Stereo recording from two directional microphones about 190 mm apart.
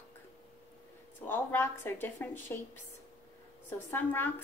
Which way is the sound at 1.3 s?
10° left (ahead or behind).